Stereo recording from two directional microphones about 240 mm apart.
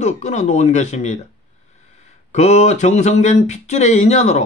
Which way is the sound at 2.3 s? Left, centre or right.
Left.